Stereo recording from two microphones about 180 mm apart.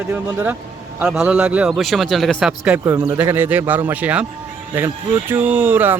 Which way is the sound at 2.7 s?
15° right (ahead or behind).